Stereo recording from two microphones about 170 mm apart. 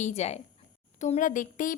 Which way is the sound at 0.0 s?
40° left (ahead or behind).